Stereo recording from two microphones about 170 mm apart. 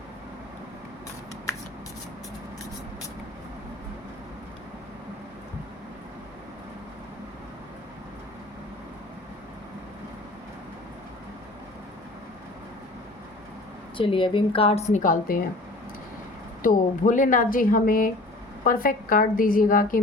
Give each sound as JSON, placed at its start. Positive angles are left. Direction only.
{"t": 13.9, "sound": "a woman's voice", "side_deg": 30}
{"t": 16.6, "sound": "speech", "side_deg": 50}